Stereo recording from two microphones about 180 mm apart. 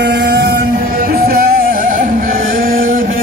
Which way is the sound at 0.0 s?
70° right (ahead or behind).